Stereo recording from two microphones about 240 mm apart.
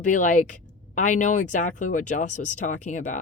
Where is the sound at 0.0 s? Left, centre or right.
Left.